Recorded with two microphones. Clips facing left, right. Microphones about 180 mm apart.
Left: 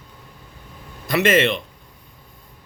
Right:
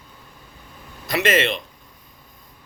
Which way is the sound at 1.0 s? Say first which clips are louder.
Left 3 dB; 50° left (ahead or behind).